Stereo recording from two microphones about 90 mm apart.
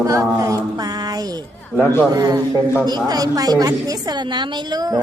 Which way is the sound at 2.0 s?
45° right (ahead or behind).